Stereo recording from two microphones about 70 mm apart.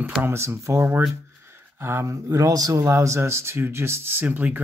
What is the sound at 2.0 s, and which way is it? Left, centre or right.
Speech, right.